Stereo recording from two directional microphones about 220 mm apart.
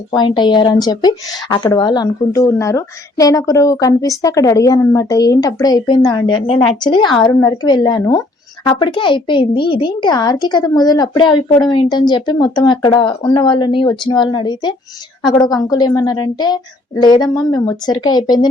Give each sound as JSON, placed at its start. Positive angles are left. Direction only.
{"t": 0.1, "sound": "a woman's voice", "side_deg": 20}